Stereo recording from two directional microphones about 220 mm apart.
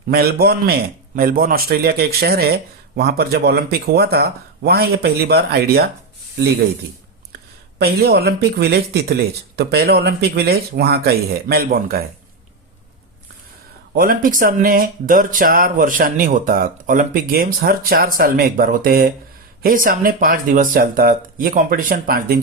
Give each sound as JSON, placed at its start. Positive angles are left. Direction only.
{"t": 0.1, "sound": "a man's voice", "side_deg": -45}
{"t": 7.8, "sound": "a man's voice", "side_deg": -45}
{"t": 13.9, "sound": "speech", "side_deg": -40}